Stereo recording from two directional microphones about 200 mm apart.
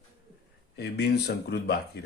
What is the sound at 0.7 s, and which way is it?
Speech, 55° left (ahead or behind).